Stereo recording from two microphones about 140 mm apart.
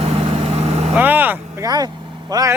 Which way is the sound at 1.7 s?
30° right (ahead or behind).